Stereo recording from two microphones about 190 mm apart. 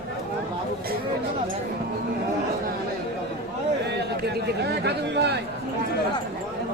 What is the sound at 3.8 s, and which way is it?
Speech, 60° right (ahead or behind).